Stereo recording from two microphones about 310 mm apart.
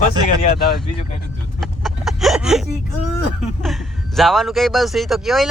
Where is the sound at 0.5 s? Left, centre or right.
Left.